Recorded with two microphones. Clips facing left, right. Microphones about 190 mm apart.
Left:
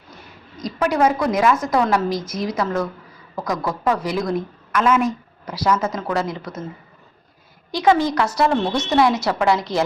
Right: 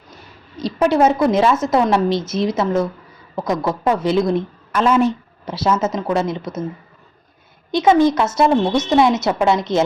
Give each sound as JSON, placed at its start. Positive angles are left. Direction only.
{"t": 0.5, "sound": "a woman's voice", "side_deg": -30}
{"t": 7.7, "sound": "a woman's voice", "side_deg": -20}
{"t": 8.7, "sound": "speech", "side_deg": 0}
{"t": 9.0, "sound": "a woman's voice", "side_deg": -20}